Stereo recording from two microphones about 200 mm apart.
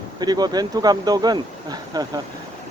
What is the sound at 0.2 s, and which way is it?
Speech, 20° right (ahead or behind).